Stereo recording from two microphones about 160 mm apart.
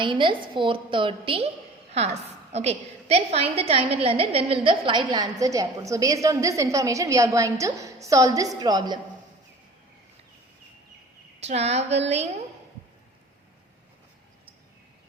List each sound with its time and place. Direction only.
0.0 s a woman's voice: 30° right (ahead or behind)
11.3 s a woman's voice: 45° right (ahead or behind)